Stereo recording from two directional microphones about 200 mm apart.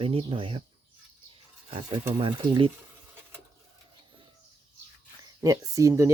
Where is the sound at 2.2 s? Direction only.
25° right (ahead or behind).